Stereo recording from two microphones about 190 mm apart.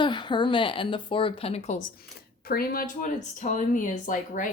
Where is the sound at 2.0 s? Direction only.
55° left (ahead or behind).